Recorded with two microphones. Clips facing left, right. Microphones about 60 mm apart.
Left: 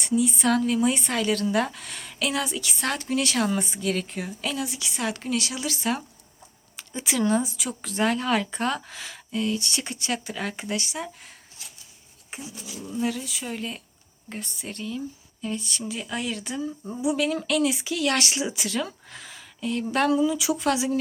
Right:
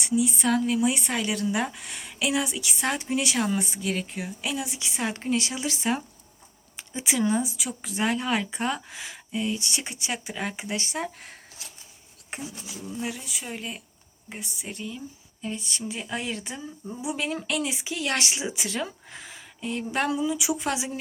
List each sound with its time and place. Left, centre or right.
0.0 s a woman's voice: centre
10.8 s speech: right
12.9 s a woman's voice: centre
16.8 s speech: centre
17.1 s speech: right